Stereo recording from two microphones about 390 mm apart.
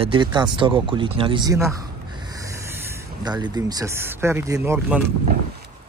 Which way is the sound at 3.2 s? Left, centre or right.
Centre.